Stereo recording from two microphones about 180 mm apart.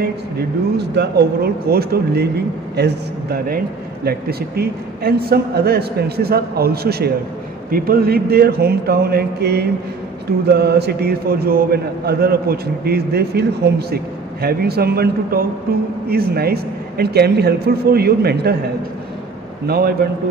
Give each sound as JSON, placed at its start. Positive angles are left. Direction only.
{"t": 0.7, "sound": "speech", "side_deg": -65}
{"t": 19.7, "sound": "speech", "side_deg": -60}